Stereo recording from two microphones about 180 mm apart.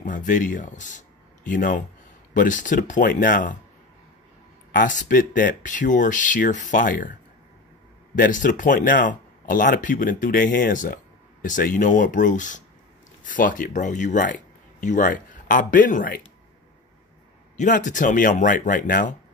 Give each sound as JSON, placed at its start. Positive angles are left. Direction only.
{"t": 0.0, "sound": "speech", "side_deg": 45}
{"t": 4.7, "sound": "speech", "side_deg": 45}
{"t": 8.2, "sound": "speech", "side_deg": 45}
{"t": 17.6, "sound": "speech", "side_deg": 45}